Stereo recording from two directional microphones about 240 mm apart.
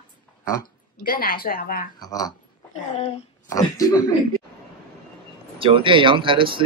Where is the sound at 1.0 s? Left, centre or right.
Left.